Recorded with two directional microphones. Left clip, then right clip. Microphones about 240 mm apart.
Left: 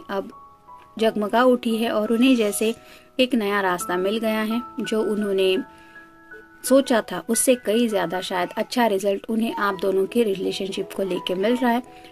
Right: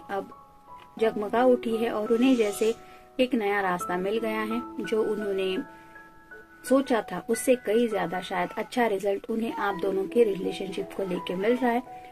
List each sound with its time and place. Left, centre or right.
0.9 s speech: left
6.7 s speech: left